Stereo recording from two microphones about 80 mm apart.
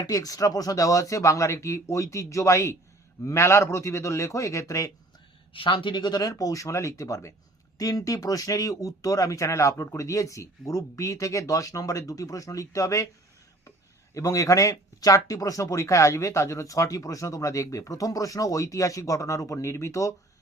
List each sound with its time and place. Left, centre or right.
0.0 s a man's voice: left
5.5 s speech: left